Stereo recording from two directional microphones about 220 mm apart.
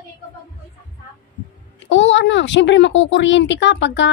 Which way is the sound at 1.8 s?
55° left (ahead or behind).